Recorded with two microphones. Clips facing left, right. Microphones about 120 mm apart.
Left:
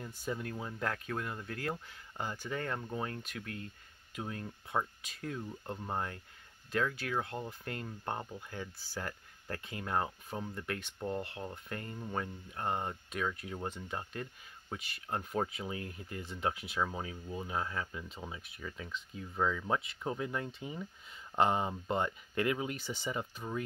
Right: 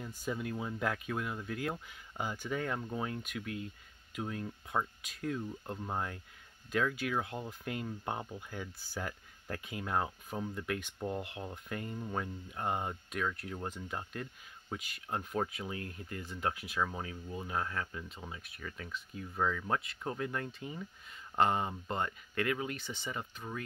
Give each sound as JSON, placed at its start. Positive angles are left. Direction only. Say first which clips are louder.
{"t": 0.3, "sound": "speech", "louder": "right 2 dB", "side_deg": -5}
{"t": 13.4, "sound": "speech", "louder": "even", "side_deg": 5}
{"t": 15.3, "sound": "speech", "louder": "left 1 dB", "side_deg": 10}
{"t": 22.3, "sound": "speech", "louder": "left 1 dB", "side_deg": 20}